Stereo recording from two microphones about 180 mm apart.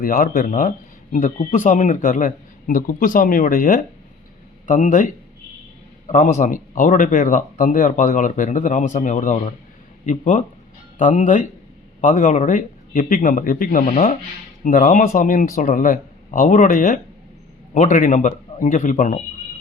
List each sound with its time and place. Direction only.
0.0 s speech: 50° left (ahead or behind)